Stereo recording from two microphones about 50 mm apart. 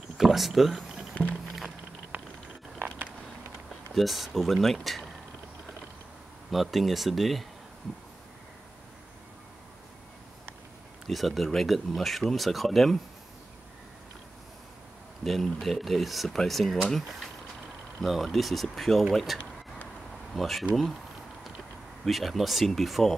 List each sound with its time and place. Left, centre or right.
0.2 s speech: centre
2.1 s a sound: right
3.9 s speech: centre
6.5 s speech: centre
11.1 s speech: centre
15.2 s speech: centre
18.0 s speech: centre
22.0 s speech: centre